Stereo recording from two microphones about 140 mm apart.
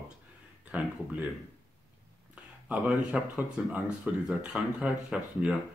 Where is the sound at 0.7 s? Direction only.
10° right (ahead or behind).